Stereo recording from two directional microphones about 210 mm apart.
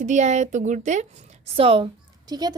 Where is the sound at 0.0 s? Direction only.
35° right (ahead or behind).